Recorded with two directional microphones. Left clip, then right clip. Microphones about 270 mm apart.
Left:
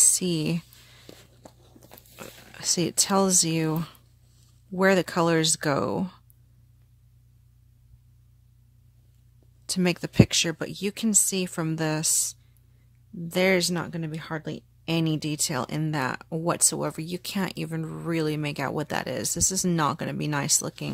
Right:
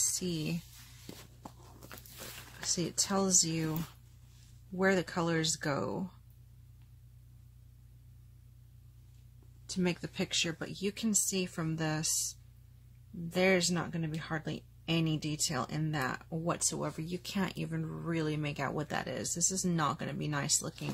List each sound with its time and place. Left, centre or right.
0.1 s speech: left
2.6 s speech: left
4.7 s speech: left
9.7 s speech: left